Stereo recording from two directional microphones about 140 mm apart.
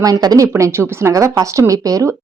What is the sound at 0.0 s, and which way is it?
Speech, 25° right (ahead or behind).